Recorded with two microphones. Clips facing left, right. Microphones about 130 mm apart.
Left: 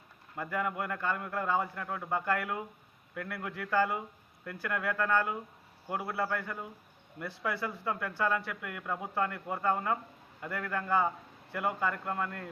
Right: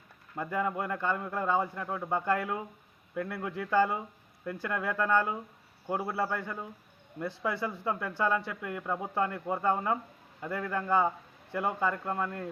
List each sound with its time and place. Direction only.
0.3 s a man's voice: 20° right (ahead or behind)